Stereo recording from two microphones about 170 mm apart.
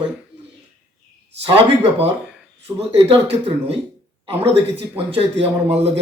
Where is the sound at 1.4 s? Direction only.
30° right (ahead or behind).